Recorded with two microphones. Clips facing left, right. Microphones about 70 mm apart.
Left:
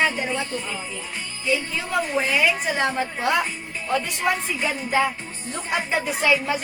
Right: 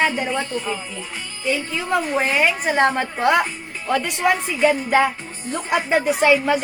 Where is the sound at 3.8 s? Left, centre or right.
Right.